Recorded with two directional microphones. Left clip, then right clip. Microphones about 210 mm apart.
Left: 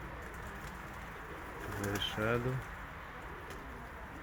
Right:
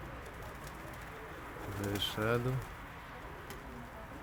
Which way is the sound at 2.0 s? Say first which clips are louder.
Right 1 dB; 20° right (ahead or behind).